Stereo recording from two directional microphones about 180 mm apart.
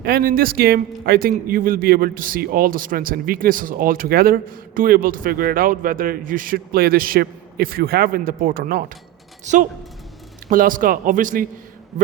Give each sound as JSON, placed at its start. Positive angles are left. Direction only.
{"t": 0.0, "sound": "a man's voice", "side_deg": -55}
{"t": 9.4, "sound": "a man's voice", "side_deg": -40}